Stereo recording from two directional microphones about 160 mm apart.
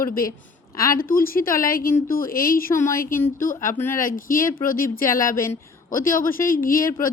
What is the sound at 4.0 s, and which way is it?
Speech, 60° left (ahead or behind).